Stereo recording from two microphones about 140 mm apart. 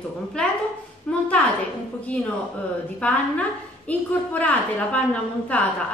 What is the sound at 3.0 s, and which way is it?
A woman's voice, 10° left (ahead or behind).